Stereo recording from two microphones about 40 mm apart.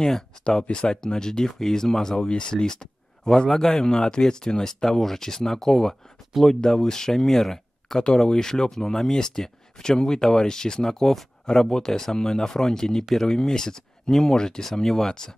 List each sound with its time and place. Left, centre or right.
0.5 s speech: left
8.0 s speech: left
14.7 s speech: centre